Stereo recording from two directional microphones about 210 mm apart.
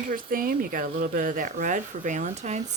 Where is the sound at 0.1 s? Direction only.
40° right (ahead or behind).